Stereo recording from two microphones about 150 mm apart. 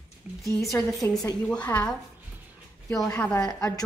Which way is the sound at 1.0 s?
25° left (ahead or behind).